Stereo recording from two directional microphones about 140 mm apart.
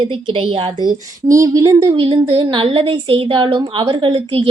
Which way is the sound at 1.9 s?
35° right (ahead or behind).